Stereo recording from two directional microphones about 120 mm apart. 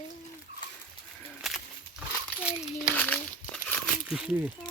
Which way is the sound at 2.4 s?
10° right (ahead or behind).